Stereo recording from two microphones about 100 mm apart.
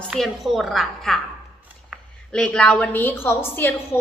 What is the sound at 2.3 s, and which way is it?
A woman's voice, 10° left (ahead or behind).